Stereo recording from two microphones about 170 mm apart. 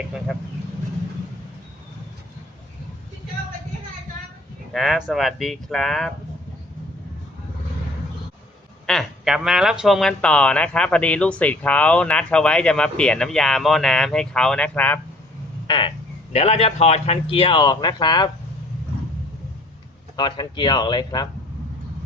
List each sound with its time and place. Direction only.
4.7 s speech: centre (ahead or behind)
8.9 s speech: centre (ahead or behind)
15.6 s a sound: 30° left (ahead or behind)
16.3 s a man's voice: 35° left (ahead or behind)
20.1 s speech: 25° left (ahead or behind)